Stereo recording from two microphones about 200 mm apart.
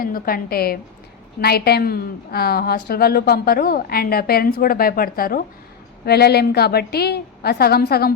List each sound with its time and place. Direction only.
0.0 s a woman's voice: 45° left (ahead or behind)